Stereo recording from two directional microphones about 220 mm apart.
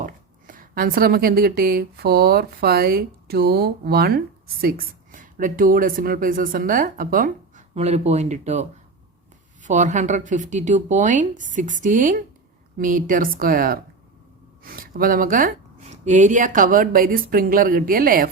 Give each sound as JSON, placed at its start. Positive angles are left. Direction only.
{"t": 0.0, "sound": "a woman's voice", "side_deg": -40}
{"t": 9.6, "sound": "speech", "side_deg": -35}